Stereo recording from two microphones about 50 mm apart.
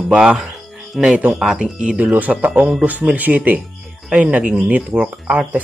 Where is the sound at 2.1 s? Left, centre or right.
Right.